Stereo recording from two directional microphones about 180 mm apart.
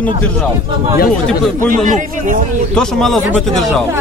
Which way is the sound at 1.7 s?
45° right (ahead or behind).